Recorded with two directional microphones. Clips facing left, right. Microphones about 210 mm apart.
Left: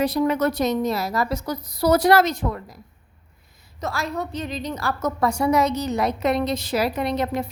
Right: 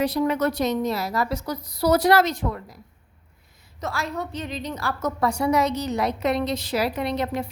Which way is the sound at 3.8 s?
40° left (ahead or behind).